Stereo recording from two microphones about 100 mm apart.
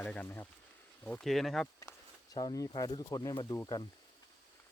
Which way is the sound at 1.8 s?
35° left (ahead or behind).